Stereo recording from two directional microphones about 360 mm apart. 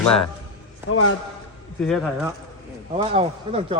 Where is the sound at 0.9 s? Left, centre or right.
Left.